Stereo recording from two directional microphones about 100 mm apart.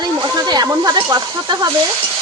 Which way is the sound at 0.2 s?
45° right (ahead or behind).